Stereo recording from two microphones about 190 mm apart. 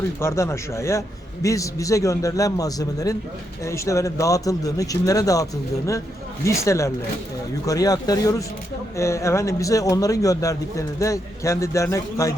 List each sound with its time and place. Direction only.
0.2 s a man's voice: 15° left (ahead or behind)